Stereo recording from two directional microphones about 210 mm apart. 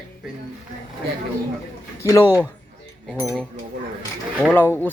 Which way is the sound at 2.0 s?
15° left (ahead or behind).